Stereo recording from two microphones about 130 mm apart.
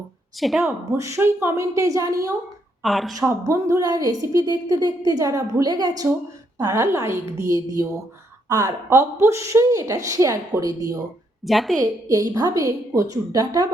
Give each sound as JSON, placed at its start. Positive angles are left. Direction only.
{"t": 0.3, "sound": "a woman's voice", "side_deg": 0}
{"t": 0.9, "sound": "a woman's voice", "side_deg": -25}
{"t": 2.8, "sound": "a woman's voice", "side_deg": 0}
{"t": 3.2, "sound": "a woman's voice", "side_deg": -25}
{"t": 11.4, "sound": "a woman's voice", "side_deg": 0}
{"t": 11.8, "sound": "a woman's voice", "side_deg": -25}